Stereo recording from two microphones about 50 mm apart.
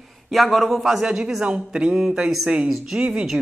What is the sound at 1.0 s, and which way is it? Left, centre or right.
Speech, centre.